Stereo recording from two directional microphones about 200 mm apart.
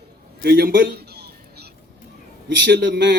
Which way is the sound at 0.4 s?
55° right (ahead or behind).